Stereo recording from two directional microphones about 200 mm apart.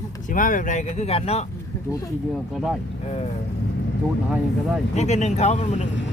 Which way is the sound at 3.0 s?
30° left (ahead or behind).